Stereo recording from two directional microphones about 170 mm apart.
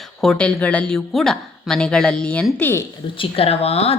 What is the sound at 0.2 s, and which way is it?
Speech, 5° left (ahead or behind).